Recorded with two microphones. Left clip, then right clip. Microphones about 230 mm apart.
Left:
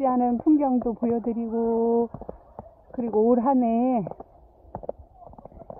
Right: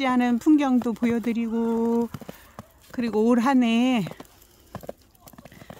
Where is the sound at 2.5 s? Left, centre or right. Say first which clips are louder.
Right 2 dB; right.